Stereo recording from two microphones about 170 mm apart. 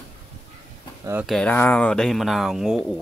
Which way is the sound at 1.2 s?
Centre (ahead or behind).